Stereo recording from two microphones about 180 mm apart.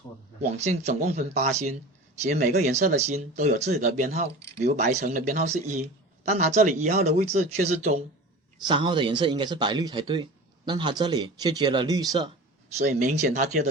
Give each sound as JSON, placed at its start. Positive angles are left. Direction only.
{"t": 0.5, "sound": "speech", "side_deg": -40}
{"t": 8.6, "sound": "speech", "side_deg": -25}
{"t": 12.7, "sound": "speech", "side_deg": -40}